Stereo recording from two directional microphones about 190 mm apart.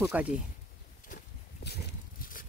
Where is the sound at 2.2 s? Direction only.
45° left (ahead or behind).